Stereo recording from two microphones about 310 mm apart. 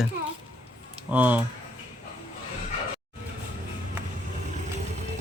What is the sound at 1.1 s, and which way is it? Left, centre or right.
Speech, centre.